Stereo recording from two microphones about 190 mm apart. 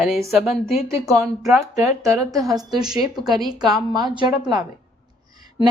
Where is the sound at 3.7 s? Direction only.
20° right (ahead or behind).